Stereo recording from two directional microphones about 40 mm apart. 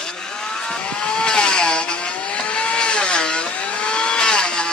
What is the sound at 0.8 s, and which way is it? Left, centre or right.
Vehicle, left.